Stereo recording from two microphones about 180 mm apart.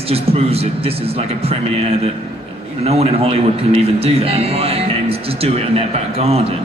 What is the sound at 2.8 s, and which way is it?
A man's voice, 35° right (ahead or behind).